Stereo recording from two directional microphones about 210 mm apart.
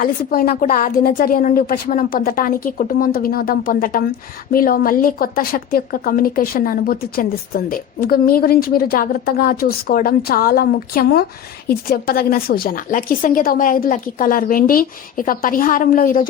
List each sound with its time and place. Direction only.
0.0 s a woman's voice: 45° left (ahead or behind)